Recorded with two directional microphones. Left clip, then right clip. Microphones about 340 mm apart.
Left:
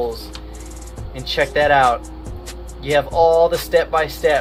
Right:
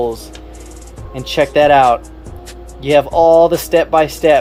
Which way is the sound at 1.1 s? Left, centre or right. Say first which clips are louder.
Right 5 dB; right.